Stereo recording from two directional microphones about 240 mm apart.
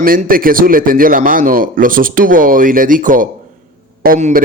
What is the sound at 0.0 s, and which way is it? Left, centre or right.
A man's voice, right.